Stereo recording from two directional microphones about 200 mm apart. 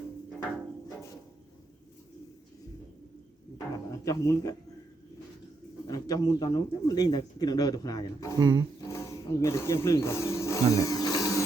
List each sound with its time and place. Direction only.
3.9 s speech: 15° left (ahead or behind)
5.9 s speech: 20° left (ahead or behind)
8.4 s speech: 20° right (ahead or behind)
8.9 s wild animals: 15° left (ahead or behind)